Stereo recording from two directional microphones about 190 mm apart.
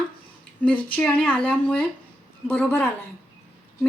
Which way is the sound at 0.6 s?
10° left (ahead or behind).